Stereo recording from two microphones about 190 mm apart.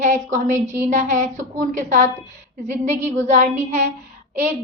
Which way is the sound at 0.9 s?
40° right (ahead or behind).